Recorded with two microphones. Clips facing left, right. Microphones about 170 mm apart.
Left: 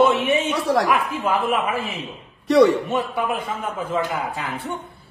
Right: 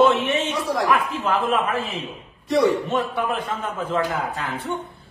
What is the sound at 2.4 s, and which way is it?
Speech, 70° left (ahead or behind).